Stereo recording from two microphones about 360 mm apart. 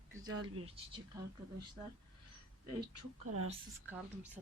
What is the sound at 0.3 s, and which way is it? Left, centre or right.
Speech, right.